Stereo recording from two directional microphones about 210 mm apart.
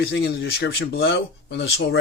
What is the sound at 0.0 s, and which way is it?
Speech, 50° left (ahead or behind).